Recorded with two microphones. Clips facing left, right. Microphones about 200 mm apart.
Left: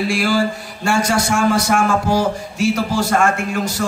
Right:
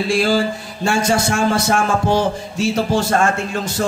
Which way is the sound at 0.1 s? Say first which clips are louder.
Right 1 dB; 25° right (ahead or behind).